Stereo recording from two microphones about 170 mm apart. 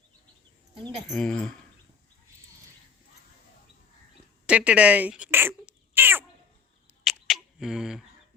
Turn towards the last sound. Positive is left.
turn(degrees=-5)  # may be behind; listen again after turning